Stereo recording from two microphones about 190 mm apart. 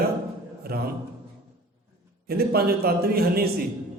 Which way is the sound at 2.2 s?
55° right (ahead or behind).